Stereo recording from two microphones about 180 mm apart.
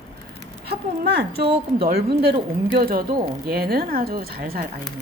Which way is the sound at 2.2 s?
55° right (ahead or behind).